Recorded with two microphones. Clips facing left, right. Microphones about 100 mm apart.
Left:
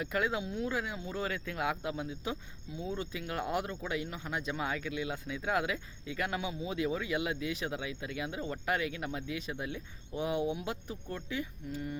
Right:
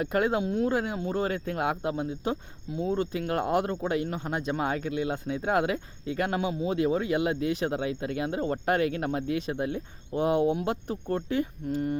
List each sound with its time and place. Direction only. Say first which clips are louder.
0.0 s speech: right 7 dB; 50° right (ahead or behind)